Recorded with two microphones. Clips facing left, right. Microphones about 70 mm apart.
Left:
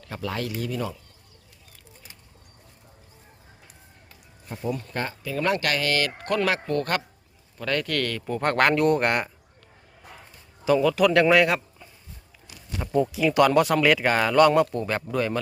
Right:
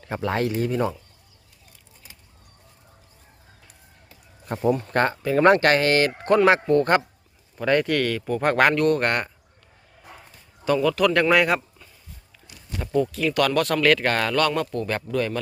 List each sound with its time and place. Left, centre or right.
0.0 s speech: right
4.4 s speech: right; by 8.7 s centre
8.7 s speech: centre
10.7 s speech: centre
12.8 s speech: centre